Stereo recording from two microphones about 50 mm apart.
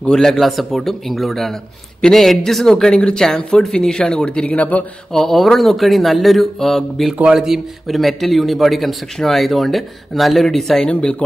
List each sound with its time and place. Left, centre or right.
0.0 s speech: centre
0.3 s speech: centre
4.5 s a man's voice: left
5.1 s speech: centre
7.3 s a man's voice: centre
11.0 s speech: centre